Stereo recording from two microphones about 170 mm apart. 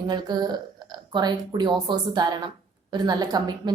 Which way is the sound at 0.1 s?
25° right (ahead or behind).